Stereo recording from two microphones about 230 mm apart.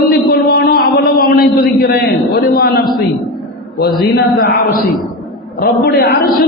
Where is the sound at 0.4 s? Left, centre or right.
Left.